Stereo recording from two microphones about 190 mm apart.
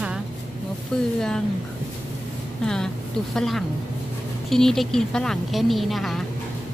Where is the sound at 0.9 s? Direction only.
5° left (ahead or behind).